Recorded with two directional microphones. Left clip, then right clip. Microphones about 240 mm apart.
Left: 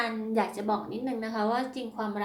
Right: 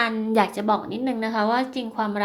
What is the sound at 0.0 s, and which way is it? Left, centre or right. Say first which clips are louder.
Speech: right 8 dB; right.